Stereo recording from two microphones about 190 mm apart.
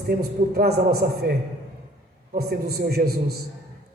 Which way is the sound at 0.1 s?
55° right (ahead or behind).